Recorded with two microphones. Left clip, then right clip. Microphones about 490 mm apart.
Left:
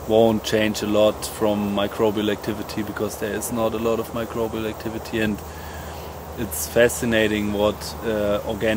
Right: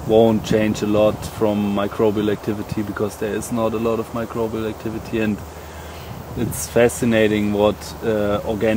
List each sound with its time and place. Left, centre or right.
0.1 s speech: right
6.7 s speech: right